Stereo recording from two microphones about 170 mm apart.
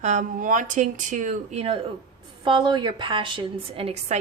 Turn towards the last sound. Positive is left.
turn(degrees=-40)  # may be behind; listen again after turning